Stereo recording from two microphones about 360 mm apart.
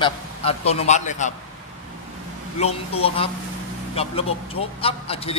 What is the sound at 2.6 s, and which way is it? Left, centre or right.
A man's voice, centre.